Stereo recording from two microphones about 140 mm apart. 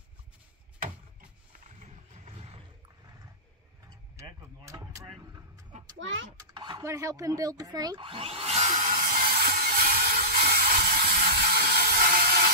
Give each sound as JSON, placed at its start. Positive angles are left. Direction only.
{"t": 1.8, "sound": "vehicle", "side_deg": -50}
{"t": 4.2, "sound": "speech", "side_deg": -20}
{"t": 6.3, "sound": "a child's voice", "side_deg": -30}
{"t": 6.8, "sound": "vacuum cleaner", "side_deg": -20}